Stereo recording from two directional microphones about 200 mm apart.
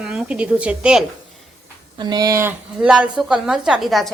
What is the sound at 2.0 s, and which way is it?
Speech, 20° right (ahead or behind).